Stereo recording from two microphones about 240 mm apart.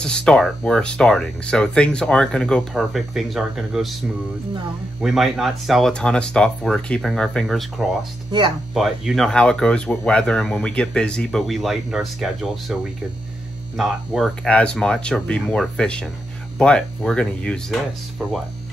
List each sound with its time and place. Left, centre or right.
0.0 s speech: centre
5.0 s speech: centre
8.3 s speech: centre
8.7 s speech: centre
13.7 s speech: centre